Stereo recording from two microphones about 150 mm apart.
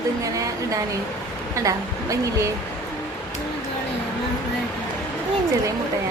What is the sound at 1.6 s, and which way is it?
Speech, 20° right (ahead or behind).